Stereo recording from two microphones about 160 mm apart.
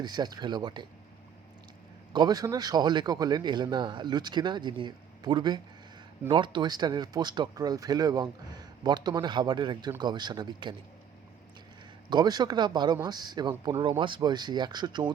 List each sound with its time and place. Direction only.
0.0 s speech: 25° right (ahead or behind)
2.1 s speech: 25° right (ahead or behind)
12.1 s speech: 25° right (ahead or behind)